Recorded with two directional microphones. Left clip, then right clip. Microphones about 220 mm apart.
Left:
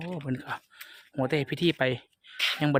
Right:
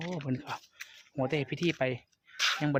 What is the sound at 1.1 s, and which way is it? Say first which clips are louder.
Speech: left 4 dB; 30° left (ahead or behind).